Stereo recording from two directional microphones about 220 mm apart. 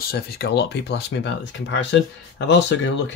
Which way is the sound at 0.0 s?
45° left (ahead or behind).